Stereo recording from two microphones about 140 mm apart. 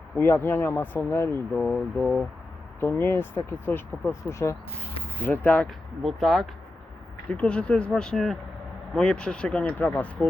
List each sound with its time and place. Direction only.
0.2 s speech: 15° left (ahead or behind)
2.8 s speech: 15° left (ahead or behind)